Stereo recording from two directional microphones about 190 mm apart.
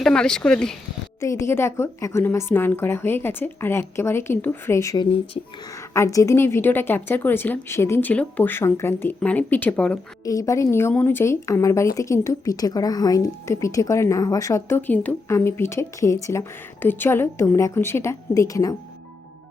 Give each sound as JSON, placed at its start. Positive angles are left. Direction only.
{"t": 0.0, "sound": "speech", "side_deg": 5}
{"t": 1.2, "sound": "a woman's voice", "side_deg": 15}
{"t": 5.4, "sound": "speech", "side_deg": 30}
{"t": 5.7, "sound": "a woman's voice", "side_deg": 15}
{"t": 10.2, "sound": "a woman's voice", "side_deg": 15}